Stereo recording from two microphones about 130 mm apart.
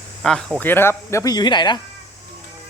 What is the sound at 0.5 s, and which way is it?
Speech, 15° left (ahead or behind).